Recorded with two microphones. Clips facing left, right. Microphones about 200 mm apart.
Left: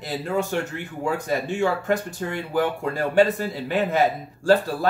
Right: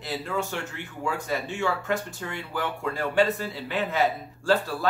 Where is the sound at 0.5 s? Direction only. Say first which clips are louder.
Left 7 dB; 50° left (ahead or behind).